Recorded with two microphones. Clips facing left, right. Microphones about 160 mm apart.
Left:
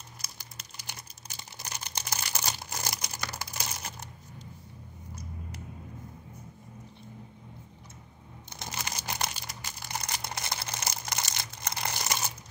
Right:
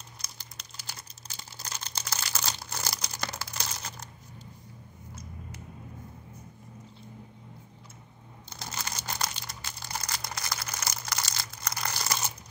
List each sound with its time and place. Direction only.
0.2 s crumpling: 10° left (ahead or behind)
3.3 s typing: 15° left (ahead or behind)
8.5 s crumpling: 15° left (ahead or behind)